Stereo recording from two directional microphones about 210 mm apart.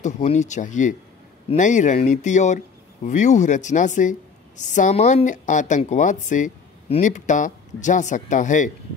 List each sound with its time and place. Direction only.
0.0 s a woman's voice: 35° left (ahead or behind)